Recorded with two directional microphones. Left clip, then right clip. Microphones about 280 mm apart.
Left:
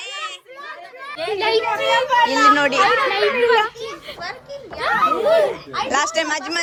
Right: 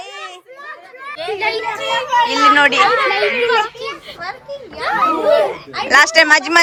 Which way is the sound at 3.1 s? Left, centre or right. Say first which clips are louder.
Right 1 dB; centre.